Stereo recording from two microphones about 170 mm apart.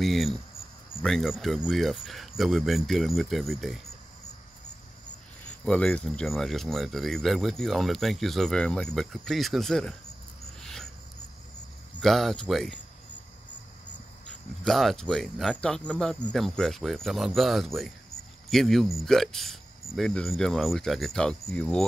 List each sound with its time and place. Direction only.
0.0 s speech: centre (ahead or behind)
5.7 s speech: 5° left (ahead or behind)
10.6 s a sound: 5° left (ahead or behind)
12.0 s speech: centre (ahead or behind)
14.6 s speech: centre (ahead or behind)